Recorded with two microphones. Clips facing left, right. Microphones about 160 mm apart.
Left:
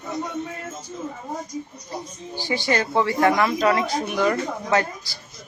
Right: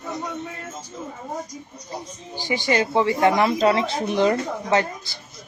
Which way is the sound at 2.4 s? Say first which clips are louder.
Right 1 dB; 15° right (ahead or behind).